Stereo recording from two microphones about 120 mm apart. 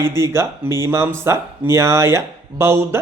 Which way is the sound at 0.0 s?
20° right (ahead or behind).